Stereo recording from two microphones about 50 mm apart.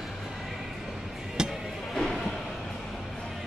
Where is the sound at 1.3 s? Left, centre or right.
Centre.